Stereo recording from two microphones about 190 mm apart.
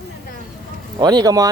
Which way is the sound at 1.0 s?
20° right (ahead or behind).